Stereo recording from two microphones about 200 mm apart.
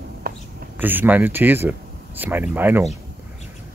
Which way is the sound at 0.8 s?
10° right (ahead or behind).